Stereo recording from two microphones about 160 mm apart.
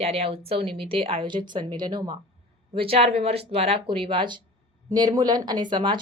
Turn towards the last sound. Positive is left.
turn(degrees=-30)  # may be behind; listen again after turning